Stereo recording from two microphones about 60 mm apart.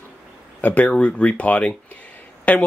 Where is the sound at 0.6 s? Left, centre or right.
Left.